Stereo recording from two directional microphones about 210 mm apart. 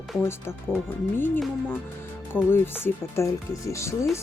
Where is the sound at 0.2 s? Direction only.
10° left (ahead or behind).